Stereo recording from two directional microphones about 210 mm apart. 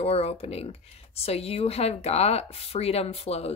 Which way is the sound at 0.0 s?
30° left (ahead or behind).